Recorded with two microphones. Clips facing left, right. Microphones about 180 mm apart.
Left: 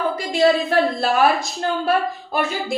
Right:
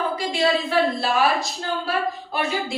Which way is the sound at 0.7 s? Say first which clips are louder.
Left 2 dB; 50° left (ahead or behind).